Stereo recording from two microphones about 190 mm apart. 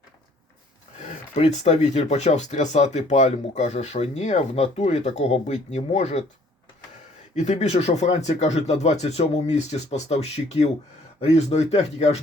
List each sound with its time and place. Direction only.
1.0 s speech: 35° left (ahead or behind)
7.3 s speech: 35° left (ahead or behind)